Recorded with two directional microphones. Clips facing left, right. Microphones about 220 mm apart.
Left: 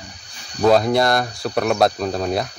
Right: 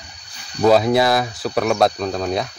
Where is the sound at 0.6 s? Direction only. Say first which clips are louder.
Right 1 dB; 5° right (ahead or behind).